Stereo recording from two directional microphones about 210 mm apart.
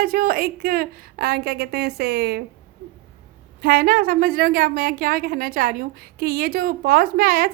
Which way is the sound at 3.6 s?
45° right (ahead or behind).